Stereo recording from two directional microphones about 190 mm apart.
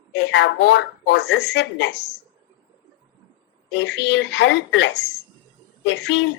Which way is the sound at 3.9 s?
65° left (ahead or behind).